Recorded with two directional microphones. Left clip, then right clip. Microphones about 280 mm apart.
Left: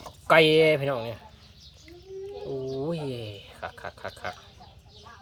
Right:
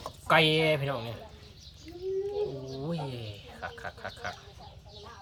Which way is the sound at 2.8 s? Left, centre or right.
Centre.